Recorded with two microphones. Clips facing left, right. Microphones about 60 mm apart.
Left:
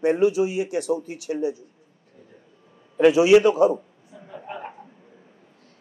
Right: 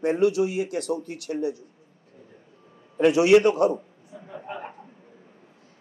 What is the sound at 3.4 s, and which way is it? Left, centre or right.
Speech, right.